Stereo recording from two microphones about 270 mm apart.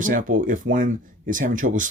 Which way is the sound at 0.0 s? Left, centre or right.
Right.